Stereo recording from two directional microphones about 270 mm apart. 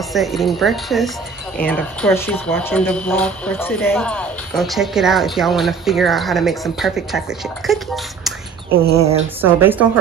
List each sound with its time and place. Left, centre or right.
0.1 s speech: centre
8.9 s speech: right
9.4 s a woman's voice: centre